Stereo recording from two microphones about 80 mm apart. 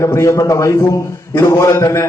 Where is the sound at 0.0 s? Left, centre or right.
Left.